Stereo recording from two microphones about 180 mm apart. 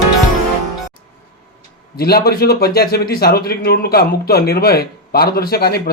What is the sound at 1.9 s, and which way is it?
Speech, 60° left (ahead or behind).